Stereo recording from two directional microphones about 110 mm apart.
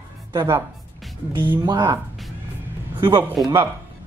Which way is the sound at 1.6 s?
40° right (ahead or behind).